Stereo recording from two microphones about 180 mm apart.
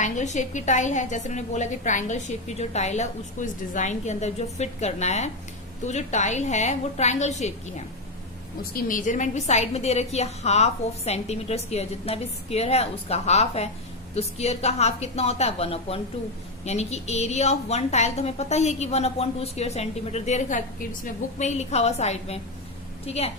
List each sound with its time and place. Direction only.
0.0 s a woman's voice: 40° left (ahead or behind)
8.7 s a woman's voice: 45° left (ahead or behind)